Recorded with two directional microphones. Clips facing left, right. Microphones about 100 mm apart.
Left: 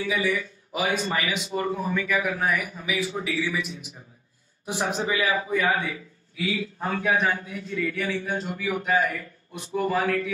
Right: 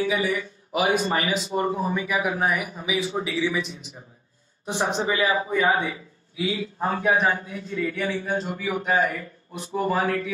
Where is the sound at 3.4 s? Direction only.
Centre (ahead or behind).